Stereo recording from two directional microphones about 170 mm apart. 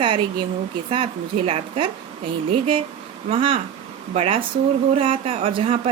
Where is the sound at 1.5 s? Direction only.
30° right (ahead or behind).